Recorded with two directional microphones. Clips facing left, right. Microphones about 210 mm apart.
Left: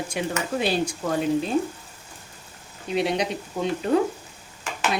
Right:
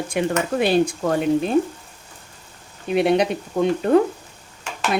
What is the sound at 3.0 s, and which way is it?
Speech, 55° right (ahead or behind).